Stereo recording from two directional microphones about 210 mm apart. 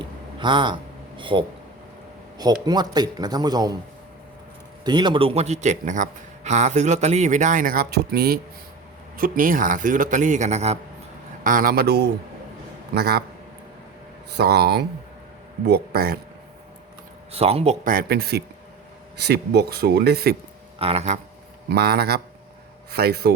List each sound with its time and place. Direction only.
0.0 s a sound: 25° right (ahead or behind)
2.4 s a man's voice: 20° right (ahead or behind)
4.8 s a man's voice: 20° right (ahead or behind)
11.4 s speech: 40° right (ahead or behind)
14.3 s speech: 50° right (ahead or behind)
17.3 s a man's voice: 30° right (ahead or behind); by 20.3 s 50° right (ahead or behind)
20.7 s a man's voice: 30° right (ahead or behind)
21.7 s speech: 50° right (ahead or behind)